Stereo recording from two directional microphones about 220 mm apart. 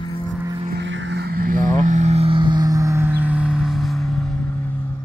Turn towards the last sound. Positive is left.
turn(degrees=5)  # may be behind; listen again after turning